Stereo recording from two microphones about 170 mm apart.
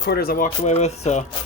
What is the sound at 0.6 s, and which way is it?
Speech, 40° left (ahead or behind).